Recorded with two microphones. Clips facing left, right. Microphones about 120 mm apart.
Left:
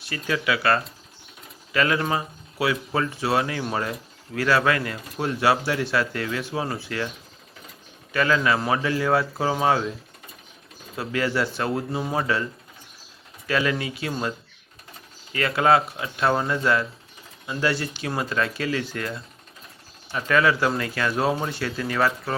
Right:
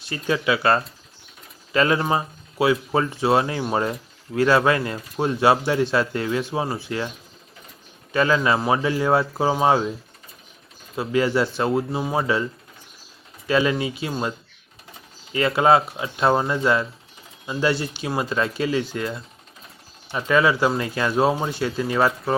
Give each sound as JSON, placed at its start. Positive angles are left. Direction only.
{"t": 0.0, "sound": "speech", "side_deg": -25}
{"t": 8.1, "sound": "speech", "side_deg": -25}
{"t": 10.9, "sound": "speech", "side_deg": -20}
{"t": 13.5, "sound": "speech", "side_deg": -20}
{"t": 15.3, "sound": "speech", "side_deg": -20}